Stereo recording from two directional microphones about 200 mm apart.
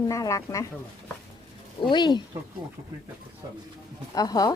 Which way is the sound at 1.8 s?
25° left (ahead or behind).